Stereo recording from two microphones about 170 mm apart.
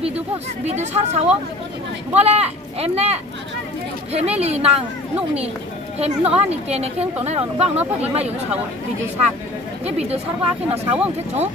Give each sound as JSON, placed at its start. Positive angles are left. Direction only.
{"t": 0.7, "sound": "a woman's voice", "side_deg": -40}
{"t": 5.9, "sound": "a woman's voice", "side_deg": -35}
{"t": 9.8, "sound": "a woman's voice", "side_deg": -40}